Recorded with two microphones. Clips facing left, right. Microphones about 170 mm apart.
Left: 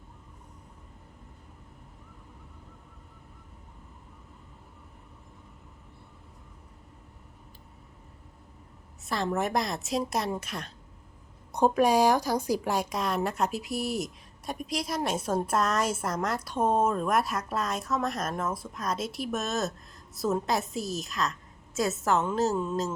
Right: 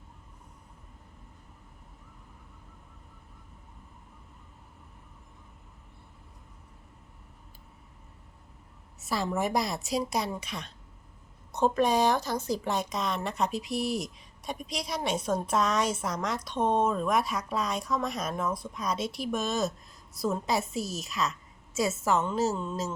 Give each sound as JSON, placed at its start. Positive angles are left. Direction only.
{"t": 9.0, "sound": "a woman's voice", "side_deg": -5}